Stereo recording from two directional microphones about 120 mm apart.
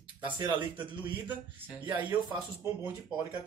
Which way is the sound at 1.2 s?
15° right (ahead or behind).